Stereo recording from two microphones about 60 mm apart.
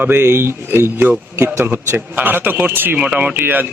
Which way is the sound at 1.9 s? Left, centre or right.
Right.